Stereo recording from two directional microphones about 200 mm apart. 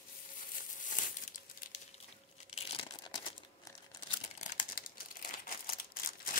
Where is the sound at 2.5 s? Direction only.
30° left (ahead or behind).